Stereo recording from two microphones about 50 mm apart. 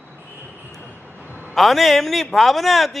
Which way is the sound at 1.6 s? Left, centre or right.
Centre.